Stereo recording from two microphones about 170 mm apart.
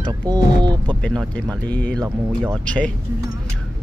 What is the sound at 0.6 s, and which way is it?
Speech, 25° right (ahead or behind).